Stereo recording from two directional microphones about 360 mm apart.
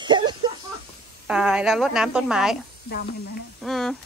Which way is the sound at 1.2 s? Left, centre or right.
Centre.